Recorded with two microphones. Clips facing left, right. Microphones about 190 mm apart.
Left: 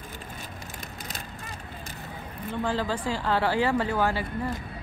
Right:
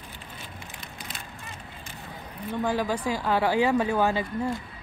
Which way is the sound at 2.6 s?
10° right (ahead or behind).